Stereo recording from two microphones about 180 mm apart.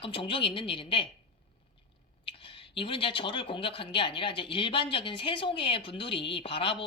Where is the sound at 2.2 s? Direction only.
30° left (ahead or behind).